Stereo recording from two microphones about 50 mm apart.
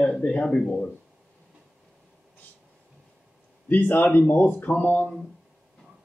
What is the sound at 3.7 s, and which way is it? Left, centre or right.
Speech, left.